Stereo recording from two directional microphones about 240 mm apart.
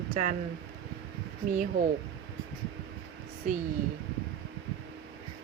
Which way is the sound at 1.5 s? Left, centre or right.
Right.